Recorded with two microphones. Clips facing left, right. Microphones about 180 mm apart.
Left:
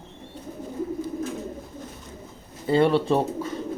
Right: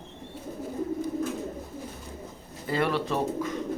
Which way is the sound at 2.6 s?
30° left (ahead or behind).